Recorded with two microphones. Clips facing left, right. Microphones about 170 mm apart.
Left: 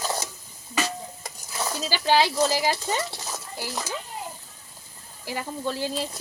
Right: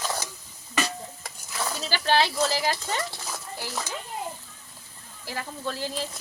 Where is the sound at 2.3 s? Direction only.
15° left (ahead or behind).